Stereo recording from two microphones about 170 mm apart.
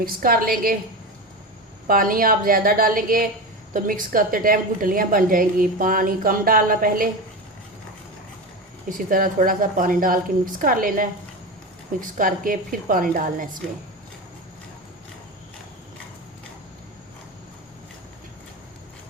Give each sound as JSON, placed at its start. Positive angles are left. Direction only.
{"t": 0.0, "sound": "a woman's voice", "side_deg": -60}
{"t": 1.9, "sound": "a woman's voice", "side_deg": -55}
{"t": 8.9, "sound": "a woman's voice", "side_deg": -55}